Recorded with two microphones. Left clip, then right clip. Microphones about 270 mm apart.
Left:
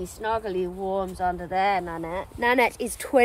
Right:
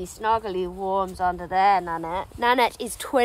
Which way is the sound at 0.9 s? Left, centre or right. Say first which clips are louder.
Right 3 dB; centre.